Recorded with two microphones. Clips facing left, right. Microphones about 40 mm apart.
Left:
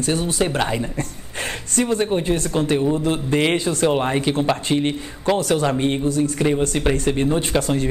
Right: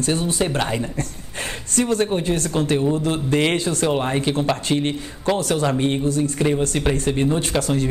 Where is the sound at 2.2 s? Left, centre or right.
Left.